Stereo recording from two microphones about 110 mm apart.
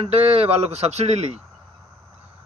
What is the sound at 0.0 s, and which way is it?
A man's voice, 70° right (ahead or behind).